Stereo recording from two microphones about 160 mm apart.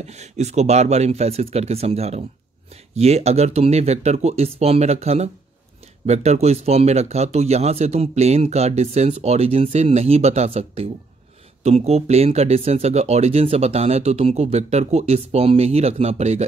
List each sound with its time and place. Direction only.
0.0 s speech: 45° right (ahead or behind)